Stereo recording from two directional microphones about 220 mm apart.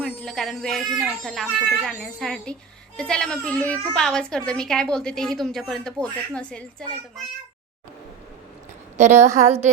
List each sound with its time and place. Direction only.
0.0 s a woman's voice: centre (ahead or behind)
9.0 s a woman's voice: 30° right (ahead or behind)